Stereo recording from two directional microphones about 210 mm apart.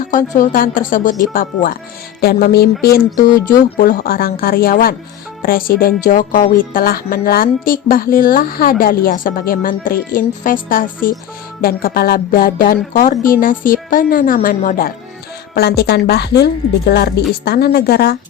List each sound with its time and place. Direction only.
0.0 s a woman's voice: 40° left (ahead or behind)